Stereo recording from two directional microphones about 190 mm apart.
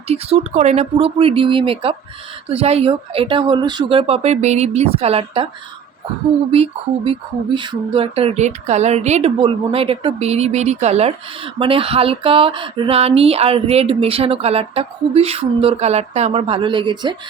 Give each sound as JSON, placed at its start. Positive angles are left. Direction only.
{"t": 0.1, "sound": "speech", "side_deg": -30}
{"t": 6.5, "sound": "speech", "side_deg": -30}